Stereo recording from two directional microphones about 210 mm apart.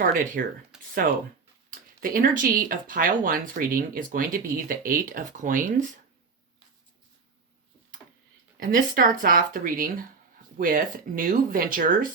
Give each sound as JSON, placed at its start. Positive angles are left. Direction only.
{"t": 0.0, "sound": "speech", "side_deg": -40}
{"t": 0.7, "sound": "a sound", "side_deg": 0}
{"t": 1.7, "sound": "speech", "side_deg": -40}
{"t": 8.5, "sound": "speech", "side_deg": -40}